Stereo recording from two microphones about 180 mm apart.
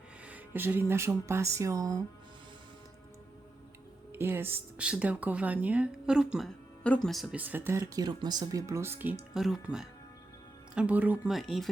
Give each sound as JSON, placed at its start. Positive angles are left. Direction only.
{"t": 0.3, "sound": "speech", "side_deg": -10}
{"t": 4.1, "sound": "speech", "side_deg": -15}
{"t": 10.8, "sound": "speech", "side_deg": -10}